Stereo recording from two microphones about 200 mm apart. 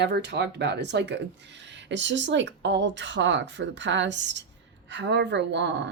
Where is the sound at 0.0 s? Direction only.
60° right (ahead or behind).